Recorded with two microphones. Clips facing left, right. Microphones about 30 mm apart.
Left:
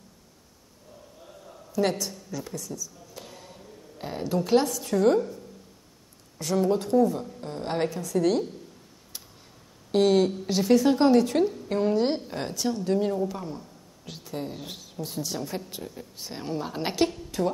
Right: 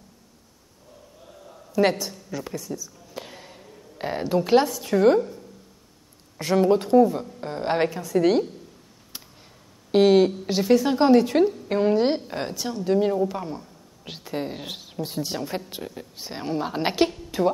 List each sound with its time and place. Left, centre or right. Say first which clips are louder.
1.2 s a sound: right 2 dB; centre
1.7 s speech: right 5 dB; right
2.0 s a sound: right 3 dB; centre
4.0 s speech: right 5 dB; right
6.4 s speech: right 5 dB; right
9.8 s a woman's voice: right 4 dB; right